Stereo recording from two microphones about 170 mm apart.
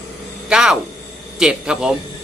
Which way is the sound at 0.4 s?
5° right (ahead or behind).